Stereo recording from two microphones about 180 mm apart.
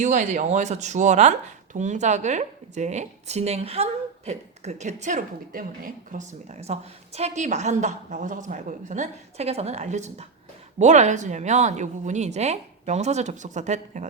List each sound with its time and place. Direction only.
0.0 s a woman's voice: 45° right (ahead or behind)